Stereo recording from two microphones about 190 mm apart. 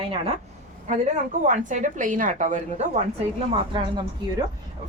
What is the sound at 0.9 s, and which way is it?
A woman's voice, 40° right (ahead or behind).